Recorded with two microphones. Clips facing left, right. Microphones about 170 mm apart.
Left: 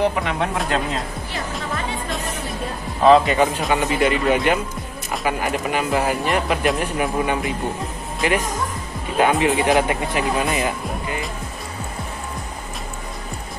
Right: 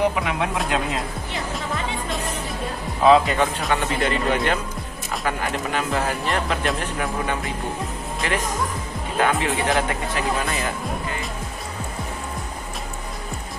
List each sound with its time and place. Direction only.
0.1 s speech: 5° right (ahead or behind)
3.0 s speech: centre (ahead or behind); by 11.1 s 15° left (ahead or behind)